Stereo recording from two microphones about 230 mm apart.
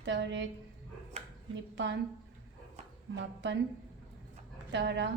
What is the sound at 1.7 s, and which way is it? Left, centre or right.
Speech, right.